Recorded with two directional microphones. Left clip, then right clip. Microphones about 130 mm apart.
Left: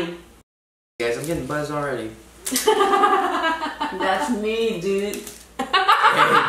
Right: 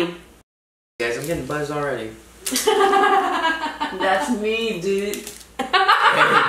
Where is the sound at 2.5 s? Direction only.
5° left (ahead or behind).